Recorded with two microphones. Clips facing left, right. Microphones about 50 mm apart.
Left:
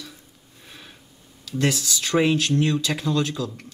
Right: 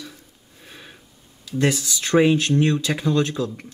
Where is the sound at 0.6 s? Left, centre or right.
Centre.